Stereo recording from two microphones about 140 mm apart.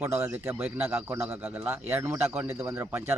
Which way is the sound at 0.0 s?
20° right (ahead or behind).